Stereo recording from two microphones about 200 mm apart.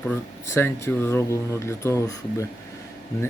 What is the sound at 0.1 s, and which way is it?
Speech, 15° left (ahead or behind).